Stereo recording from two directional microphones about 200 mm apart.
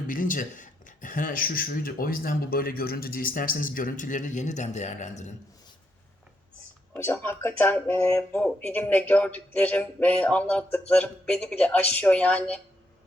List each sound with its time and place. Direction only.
0.1 s speech: 45° left (ahead or behind)
6.9 s speech: 10° left (ahead or behind)